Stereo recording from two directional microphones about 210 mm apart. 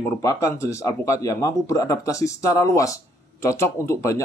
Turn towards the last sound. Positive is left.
turn(degrees=15)  # may be behind; listen again after turning